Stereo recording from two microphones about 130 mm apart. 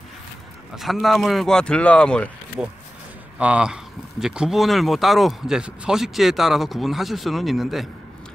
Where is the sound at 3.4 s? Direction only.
10° right (ahead or behind).